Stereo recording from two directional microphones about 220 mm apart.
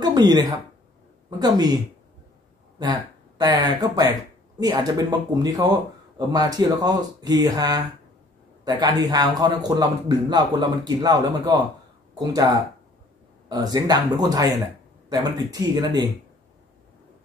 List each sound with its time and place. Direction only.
0.0 s speech: 15° right (ahead or behind)
2.8 s speech: 15° right (ahead or behind)
13.5 s speech: 15° right (ahead or behind)